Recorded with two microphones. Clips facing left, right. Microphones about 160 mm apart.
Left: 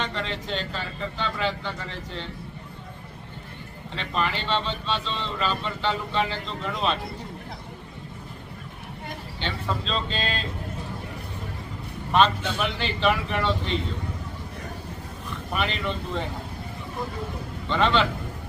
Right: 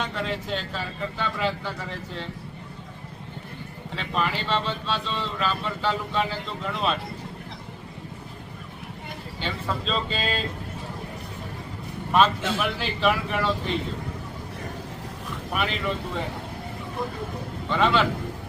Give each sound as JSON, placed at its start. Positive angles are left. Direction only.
{"t": 0.0, "sound": "speech", "side_deg": -5}
{"t": 3.9, "sound": "speech", "side_deg": -5}
{"t": 9.4, "sound": "speech", "side_deg": -5}
{"t": 12.5, "sound": "speech", "side_deg": -5}
{"t": 15.5, "sound": "speech", "side_deg": -5}
{"t": 17.7, "sound": "speech", "side_deg": -5}